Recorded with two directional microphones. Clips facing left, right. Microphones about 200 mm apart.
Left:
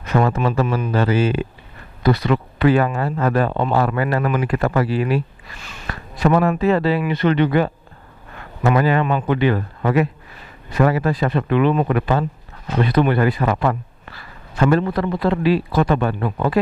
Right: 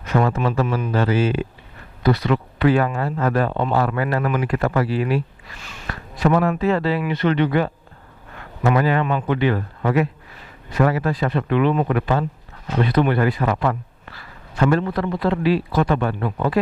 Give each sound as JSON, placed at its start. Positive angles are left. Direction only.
{"t": 0.1, "sound": "speech", "side_deg": 20}